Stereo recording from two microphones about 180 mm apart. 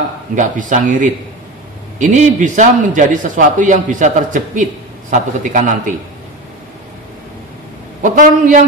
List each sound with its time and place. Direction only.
0.4 s a man's voice: 45° right (ahead or behind)
8.0 s a man's voice: 45° right (ahead or behind)